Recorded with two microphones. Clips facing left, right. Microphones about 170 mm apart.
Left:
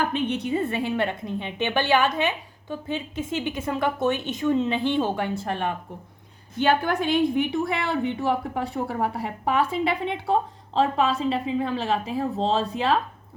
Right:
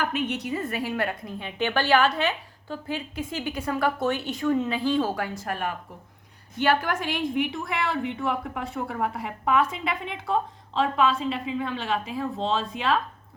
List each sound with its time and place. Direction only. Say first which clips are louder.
0.0 s a woman's voice: left 3 dB; 30° left (ahead or behind)